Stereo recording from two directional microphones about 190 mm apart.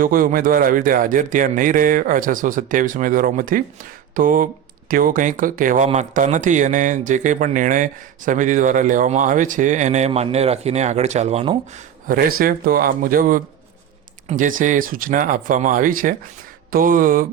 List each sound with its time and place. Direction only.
0.0 s speech: 45° right (ahead or behind)
12.4 s speech: 50° right (ahead or behind)